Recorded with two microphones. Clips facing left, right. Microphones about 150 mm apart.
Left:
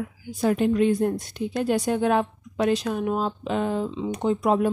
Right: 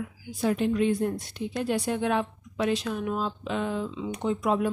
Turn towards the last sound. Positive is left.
turn(degrees=40)  # may be behind; listen again after turning